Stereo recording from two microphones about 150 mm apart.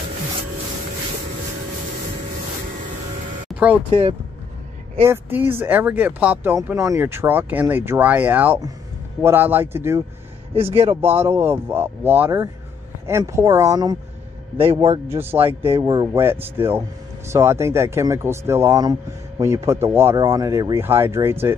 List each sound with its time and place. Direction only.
3.4 s a sound: 10° right (ahead or behind)
5.0 s speech: 15° right (ahead or behind)
10.5 s speech: 40° right (ahead or behind)
11.0 s speech: 15° right (ahead or behind)
14.6 s speech: 40° right (ahead or behind)
15.0 s speech: 15° right (ahead or behind)
15.8 s speech: 30° right (ahead or behind)
16.1 s speech: 15° right (ahead or behind)